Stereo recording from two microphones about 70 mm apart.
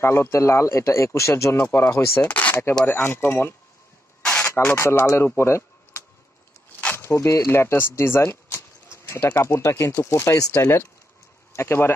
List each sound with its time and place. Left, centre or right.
0.0 s speech: left
2.2 s speech: left
2.8 s speech: left
4.7 s speech: left
6.8 s a sound: left
7.1 s speech: left